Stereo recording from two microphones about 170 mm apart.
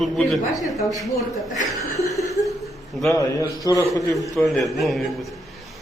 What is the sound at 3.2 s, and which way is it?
Speech, 20° left (ahead or behind).